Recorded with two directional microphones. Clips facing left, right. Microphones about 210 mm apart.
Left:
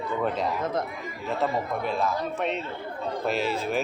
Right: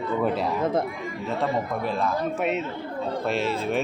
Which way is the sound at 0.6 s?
25° right (ahead or behind).